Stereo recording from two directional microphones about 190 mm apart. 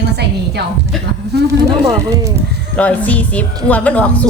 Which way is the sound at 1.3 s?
60° right (ahead or behind).